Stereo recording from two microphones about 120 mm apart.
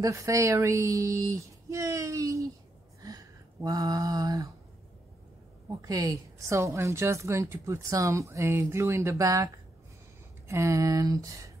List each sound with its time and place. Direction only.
0.0 s a woman's voice: 25° right (ahead or behind)
3.0 s a sound: 30° right (ahead or behind)
5.7 s a woman's voice: 30° right (ahead or behind)
10.5 s a woman's voice: 25° right (ahead or behind)